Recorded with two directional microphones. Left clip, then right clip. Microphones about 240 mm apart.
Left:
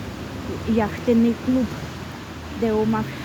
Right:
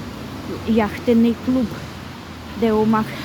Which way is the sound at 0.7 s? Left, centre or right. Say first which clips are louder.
Right 3 dB; centre.